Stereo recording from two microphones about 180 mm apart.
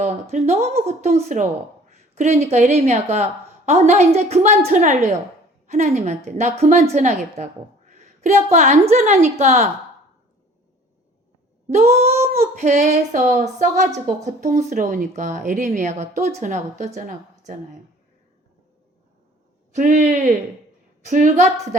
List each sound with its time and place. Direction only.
0.0 s a woman's voice: 35° right (ahead or behind)
11.7 s speech: 35° right (ahead or behind)
19.7 s speech: 40° right (ahead or behind)